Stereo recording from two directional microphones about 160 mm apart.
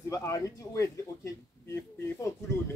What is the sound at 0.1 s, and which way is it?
Speech, 20° left (ahead or behind).